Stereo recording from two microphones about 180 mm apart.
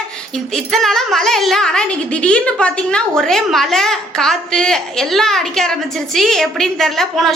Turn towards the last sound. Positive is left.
turn(degrees=0)  # may be behind; listen again after turning